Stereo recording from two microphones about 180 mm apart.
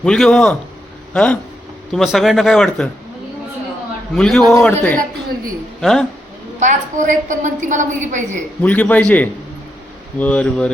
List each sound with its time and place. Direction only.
0.0 s speech: 5° left (ahead or behind)
4.1 s speech: centre (ahead or behind)
6.6 s a woman's voice: 45° right (ahead or behind)
8.6 s a man's voice: 5° left (ahead or behind)